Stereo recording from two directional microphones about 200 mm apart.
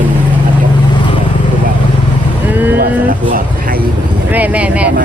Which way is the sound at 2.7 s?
45° right (ahead or behind).